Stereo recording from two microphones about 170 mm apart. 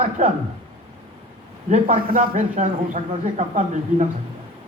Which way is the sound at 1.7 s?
55° right (ahead or behind).